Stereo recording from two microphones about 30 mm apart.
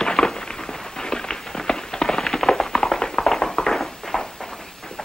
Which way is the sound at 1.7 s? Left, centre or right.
Left.